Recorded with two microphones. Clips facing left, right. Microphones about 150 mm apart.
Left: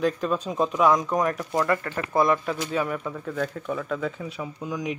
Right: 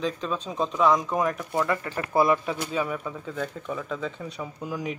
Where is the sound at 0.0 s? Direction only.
5° left (ahead or behind).